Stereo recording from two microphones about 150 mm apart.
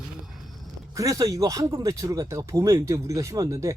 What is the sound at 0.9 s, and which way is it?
Speech, 20° right (ahead or behind).